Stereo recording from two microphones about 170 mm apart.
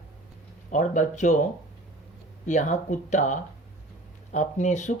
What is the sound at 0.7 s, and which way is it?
Speech, 45° left (ahead or behind).